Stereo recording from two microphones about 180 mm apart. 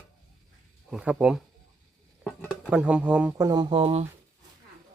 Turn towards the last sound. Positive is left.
turn(degrees=-35)  # may be behind; listen again after turning